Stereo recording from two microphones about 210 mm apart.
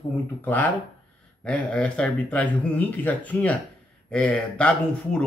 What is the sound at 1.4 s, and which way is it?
Speech, 5° left (ahead or behind).